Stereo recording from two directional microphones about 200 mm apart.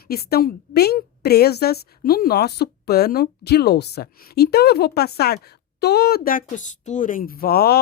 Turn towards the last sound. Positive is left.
turn(degrees=50)  # may be behind; listen again after turning